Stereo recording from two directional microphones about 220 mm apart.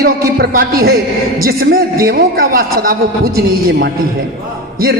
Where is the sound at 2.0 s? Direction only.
40° right (ahead or behind).